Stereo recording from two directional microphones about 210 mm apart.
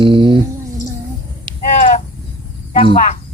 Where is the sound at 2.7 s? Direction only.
25° left (ahead or behind).